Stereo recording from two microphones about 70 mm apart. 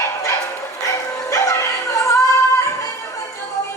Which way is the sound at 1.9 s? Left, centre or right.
Left.